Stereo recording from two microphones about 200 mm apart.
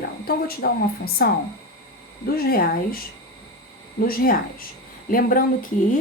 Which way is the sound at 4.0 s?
50° left (ahead or behind).